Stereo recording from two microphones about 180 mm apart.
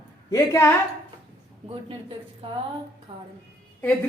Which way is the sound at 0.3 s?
15° left (ahead or behind).